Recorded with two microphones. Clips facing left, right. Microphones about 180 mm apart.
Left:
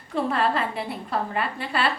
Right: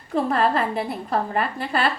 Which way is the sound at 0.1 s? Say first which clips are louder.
Right 3 dB; 45° right (ahead or behind).